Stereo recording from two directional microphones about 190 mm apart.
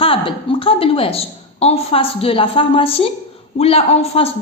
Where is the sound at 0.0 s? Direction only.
30° left (ahead or behind).